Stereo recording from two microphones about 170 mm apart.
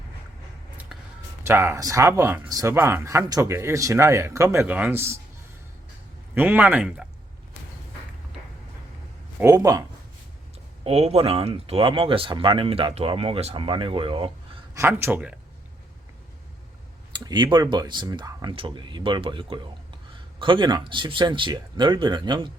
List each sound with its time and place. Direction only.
0.9 s a sound: 5° right (ahead or behind)
1.5 s speech: 15° right (ahead or behind)
6.3 s speech: 10° right (ahead or behind)
9.4 s speech: 15° right (ahead or behind)
10.8 s speech: 40° right (ahead or behind)
14.8 s speech: 15° right (ahead or behind)
17.1 s speech: 25° right (ahead or behind)